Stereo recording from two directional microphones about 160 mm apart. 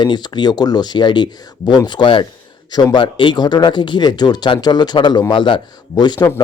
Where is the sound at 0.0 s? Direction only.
30° left (ahead or behind).